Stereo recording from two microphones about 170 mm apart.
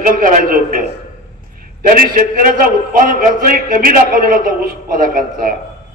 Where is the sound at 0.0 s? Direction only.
50° right (ahead or behind).